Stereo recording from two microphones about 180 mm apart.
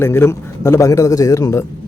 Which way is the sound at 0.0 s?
15° left (ahead or behind).